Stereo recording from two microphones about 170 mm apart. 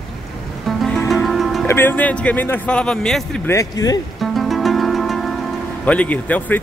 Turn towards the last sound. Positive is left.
turn(degrees=10)  # may be behind; listen again after turning